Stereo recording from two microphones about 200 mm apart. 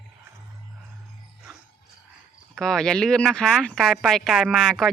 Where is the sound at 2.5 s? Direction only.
Centre (ahead or behind).